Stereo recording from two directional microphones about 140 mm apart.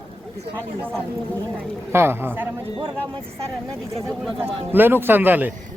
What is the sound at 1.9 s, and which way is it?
Speech, 15° right (ahead or behind).